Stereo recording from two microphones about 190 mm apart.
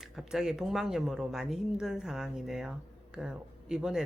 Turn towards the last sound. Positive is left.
turn(degrees=-5)  # may be behind; listen again after turning